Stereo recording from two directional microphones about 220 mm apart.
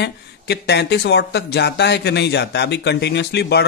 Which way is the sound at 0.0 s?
50° left (ahead or behind).